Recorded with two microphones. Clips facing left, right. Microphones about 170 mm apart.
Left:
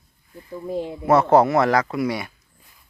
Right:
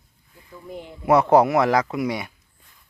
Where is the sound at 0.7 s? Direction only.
70° left (ahead or behind).